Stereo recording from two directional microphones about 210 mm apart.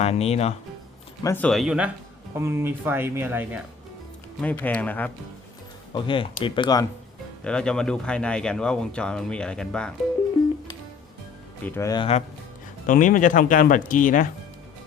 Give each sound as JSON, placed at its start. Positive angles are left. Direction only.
{"t": 0.0, "sound": "speech", "side_deg": 30}
{"t": 1.2, "sound": "speech", "side_deg": 10}
{"t": 4.4, "sound": "speech", "side_deg": 10}
{"t": 5.9, "sound": "speech", "side_deg": 25}
{"t": 7.4, "sound": "speech", "side_deg": 5}
{"t": 11.6, "sound": "speech", "side_deg": 10}
{"t": 12.8, "sound": "speech", "side_deg": 40}